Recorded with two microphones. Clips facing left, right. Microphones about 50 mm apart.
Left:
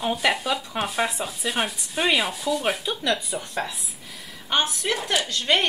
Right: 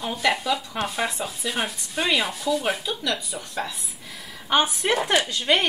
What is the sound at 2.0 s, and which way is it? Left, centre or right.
Stir, centre.